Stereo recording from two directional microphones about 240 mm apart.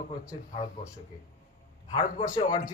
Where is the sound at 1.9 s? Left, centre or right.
Centre.